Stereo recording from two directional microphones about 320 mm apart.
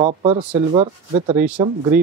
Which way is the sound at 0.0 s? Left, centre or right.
Centre.